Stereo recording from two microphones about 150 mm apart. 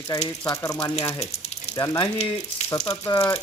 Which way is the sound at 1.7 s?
25° left (ahead or behind).